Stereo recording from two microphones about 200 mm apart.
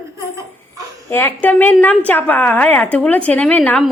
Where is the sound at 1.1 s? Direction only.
10° left (ahead or behind).